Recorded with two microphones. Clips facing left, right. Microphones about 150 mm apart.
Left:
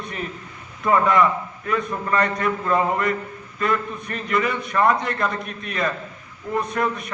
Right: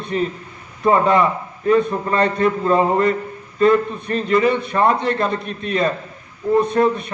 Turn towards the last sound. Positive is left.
turn(degrees=-30)  # may be behind; listen again after turning